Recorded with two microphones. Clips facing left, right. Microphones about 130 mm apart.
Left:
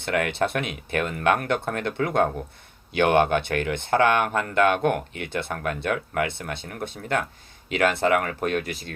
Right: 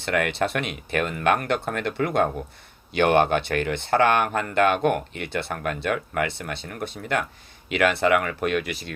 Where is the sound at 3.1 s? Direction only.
50° left (ahead or behind).